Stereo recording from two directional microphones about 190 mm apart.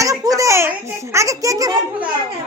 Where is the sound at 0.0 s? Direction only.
15° right (ahead or behind).